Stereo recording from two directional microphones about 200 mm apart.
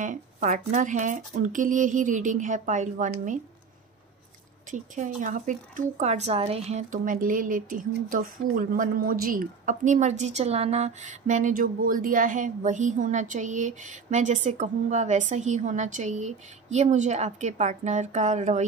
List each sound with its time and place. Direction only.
0.0 s speech: 40° right (ahead or behind)
4.6 s speech: 40° right (ahead or behind)